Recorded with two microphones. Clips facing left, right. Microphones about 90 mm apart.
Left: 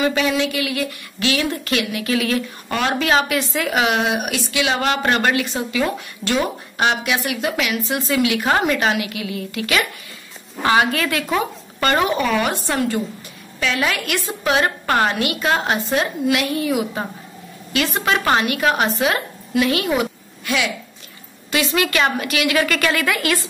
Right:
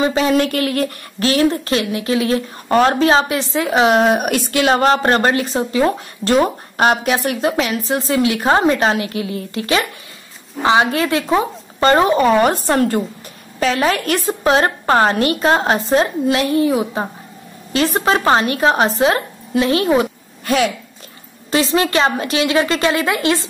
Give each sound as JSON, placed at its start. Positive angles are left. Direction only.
{"t": 0.0, "sound": "a woman's voice", "side_deg": -35}